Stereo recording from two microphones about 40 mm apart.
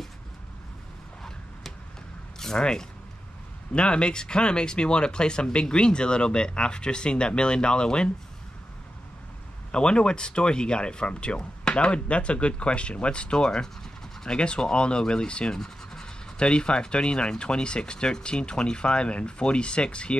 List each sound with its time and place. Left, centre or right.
2.3 s a sound: centre
2.6 s speech: centre
9.7 s speech: left
15.5 s speech: centre